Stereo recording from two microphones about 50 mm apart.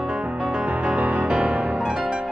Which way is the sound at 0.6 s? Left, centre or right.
Right.